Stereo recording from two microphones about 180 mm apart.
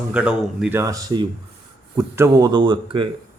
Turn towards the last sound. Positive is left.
turn(degrees=-25)  # may be behind; listen again after turning